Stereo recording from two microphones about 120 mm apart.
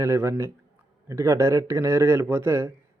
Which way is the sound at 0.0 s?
20° right (ahead or behind).